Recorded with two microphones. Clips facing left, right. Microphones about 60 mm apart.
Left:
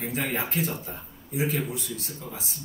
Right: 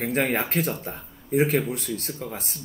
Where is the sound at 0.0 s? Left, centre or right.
Right.